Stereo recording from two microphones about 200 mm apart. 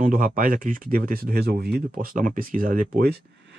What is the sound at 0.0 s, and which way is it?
Speech, 45° right (ahead or behind).